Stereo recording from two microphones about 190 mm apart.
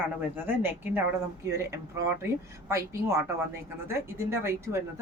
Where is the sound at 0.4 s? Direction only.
10° right (ahead or behind).